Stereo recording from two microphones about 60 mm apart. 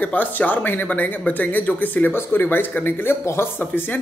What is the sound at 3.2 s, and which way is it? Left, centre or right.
Speech, left.